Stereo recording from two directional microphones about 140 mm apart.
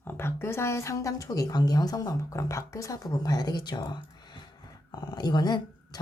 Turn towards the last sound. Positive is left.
turn(degrees=30)  # may be behind; listen again after turning